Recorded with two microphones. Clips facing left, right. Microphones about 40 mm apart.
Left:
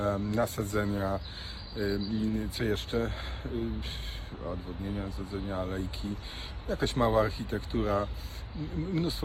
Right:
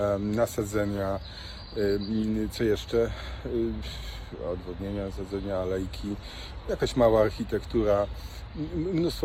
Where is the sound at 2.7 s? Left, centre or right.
Left.